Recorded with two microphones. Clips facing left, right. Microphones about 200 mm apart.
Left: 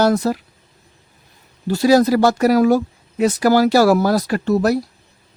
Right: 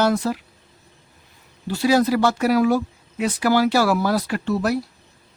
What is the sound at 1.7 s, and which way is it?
Speech, 40° left (ahead or behind).